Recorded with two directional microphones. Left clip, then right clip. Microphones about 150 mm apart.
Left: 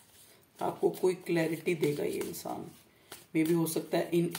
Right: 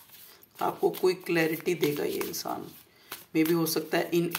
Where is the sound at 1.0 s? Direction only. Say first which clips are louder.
Right 4 dB; 25° left (ahead or behind).